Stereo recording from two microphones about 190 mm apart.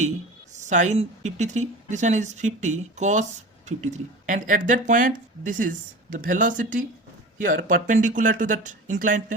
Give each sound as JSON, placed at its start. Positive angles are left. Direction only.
{"t": 0.5, "sound": "a woman's voice", "side_deg": -40}